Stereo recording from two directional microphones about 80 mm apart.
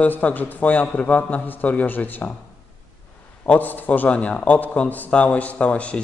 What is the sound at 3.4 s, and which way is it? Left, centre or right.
A man's voice, left.